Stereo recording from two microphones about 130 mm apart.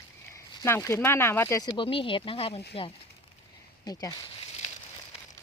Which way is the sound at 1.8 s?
40° left (ahead or behind).